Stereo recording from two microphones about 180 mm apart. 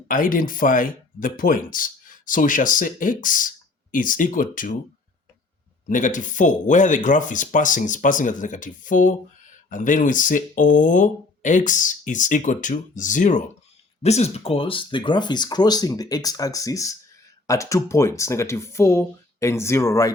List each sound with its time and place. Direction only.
0.1 s speech: 50° left (ahead or behind)
5.9 s speech: 45° left (ahead or behind); by 20.1 s 15° left (ahead or behind)